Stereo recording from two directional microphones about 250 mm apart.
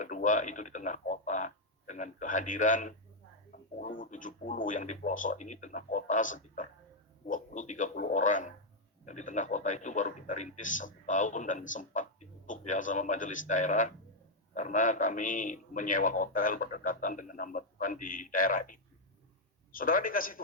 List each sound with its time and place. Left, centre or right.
0.0 s a man's voice: left